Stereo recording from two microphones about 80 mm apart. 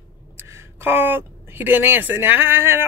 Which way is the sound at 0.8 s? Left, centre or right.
Right.